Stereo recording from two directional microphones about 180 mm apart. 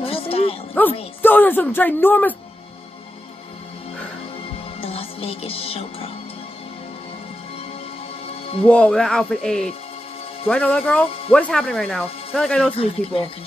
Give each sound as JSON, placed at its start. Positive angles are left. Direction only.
{"t": 0.0, "sound": "music", "side_deg": 30}
{"t": 1.2, "sound": "speech", "side_deg": 10}
{"t": 4.7, "sound": "music", "side_deg": 30}
{"t": 8.3, "sound": "music", "side_deg": 35}
{"t": 8.6, "sound": "speech", "side_deg": 5}
{"t": 12.7, "sound": "speech", "side_deg": 30}